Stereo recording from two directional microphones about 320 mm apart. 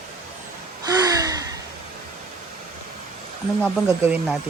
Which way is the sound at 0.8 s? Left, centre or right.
Centre.